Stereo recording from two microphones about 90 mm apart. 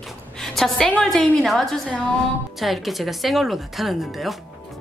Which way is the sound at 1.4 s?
Centre (ahead or behind).